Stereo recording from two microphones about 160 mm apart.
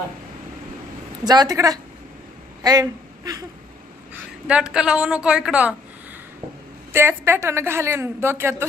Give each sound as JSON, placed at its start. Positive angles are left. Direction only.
{"t": 1.2, "sound": "a woman's voice", "side_deg": -25}
{"t": 4.4, "sound": "a woman's voice", "side_deg": -5}
{"t": 6.9, "sound": "a woman's voice", "side_deg": -15}